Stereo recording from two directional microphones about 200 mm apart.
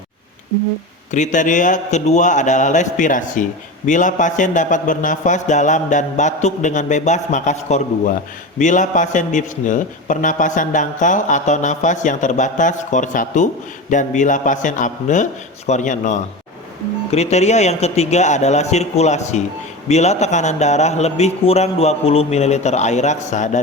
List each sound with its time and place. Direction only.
1.1 s a man's voice: 40° left (ahead or behind)